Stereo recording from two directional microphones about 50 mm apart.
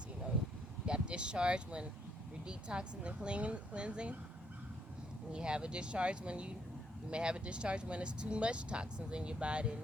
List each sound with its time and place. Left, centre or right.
0.9 s speech: centre
5.3 s speech: centre